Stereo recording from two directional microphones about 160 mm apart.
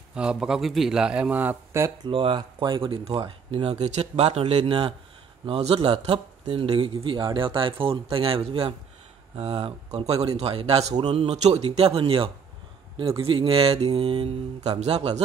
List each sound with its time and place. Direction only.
0.1 s speech: 5° right (ahead or behind)
2.0 s speech: 30° right (ahead or behind)